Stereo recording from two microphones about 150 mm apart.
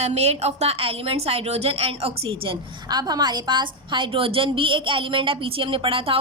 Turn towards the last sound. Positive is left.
turn(degrees=-35)  # may be behind; listen again after turning